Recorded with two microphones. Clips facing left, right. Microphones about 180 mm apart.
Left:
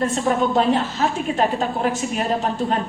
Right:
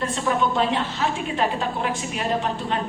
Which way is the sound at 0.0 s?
45° left (ahead or behind).